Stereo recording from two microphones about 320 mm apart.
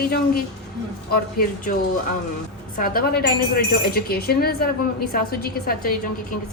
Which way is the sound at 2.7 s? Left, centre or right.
Left.